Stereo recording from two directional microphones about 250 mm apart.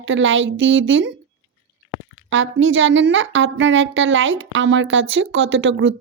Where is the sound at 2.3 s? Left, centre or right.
Right.